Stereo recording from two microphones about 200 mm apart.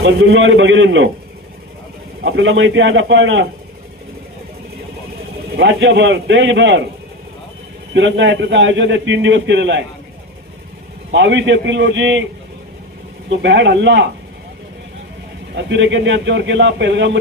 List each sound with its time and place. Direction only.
0.0 s a man's voice: 75° right (ahead or behind)
2.2 s a man's voice: 70° right (ahead or behind)
5.5 s a man's voice: 65° right (ahead or behind)
7.9 s a man's voice: 65° right (ahead or behind)
11.1 s a man's voice: 65° right (ahead or behind)
13.3 s a man's voice: 65° right (ahead or behind)
15.5 s a man's voice: 65° right (ahead or behind)